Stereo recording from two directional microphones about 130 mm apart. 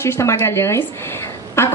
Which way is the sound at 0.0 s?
20° left (ahead or behind).